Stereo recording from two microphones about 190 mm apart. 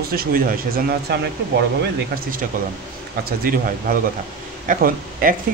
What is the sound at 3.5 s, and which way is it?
Speech, 45° right (ahead or behind).